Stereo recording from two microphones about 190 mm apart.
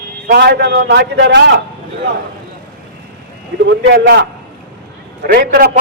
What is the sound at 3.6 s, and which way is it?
Speech, 65° right (ahead or behind).